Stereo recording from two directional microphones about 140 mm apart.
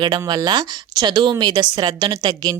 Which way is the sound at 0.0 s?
30° right (ahead or behind).